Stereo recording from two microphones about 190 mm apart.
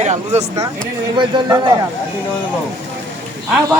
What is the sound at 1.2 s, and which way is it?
Speech, 20° right (ahead or behind).